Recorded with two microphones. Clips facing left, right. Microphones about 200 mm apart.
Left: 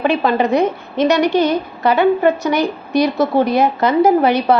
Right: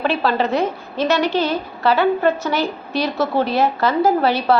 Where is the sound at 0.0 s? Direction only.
15° left (ahead or behind).